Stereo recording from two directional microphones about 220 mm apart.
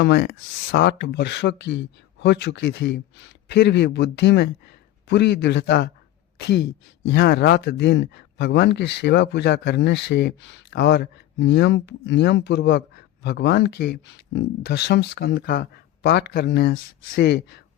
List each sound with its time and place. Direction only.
0.0 s speech: 50° left (ahead or behind)